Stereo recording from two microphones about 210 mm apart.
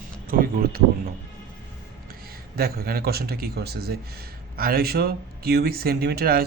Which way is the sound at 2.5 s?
45° right (ahead or behind).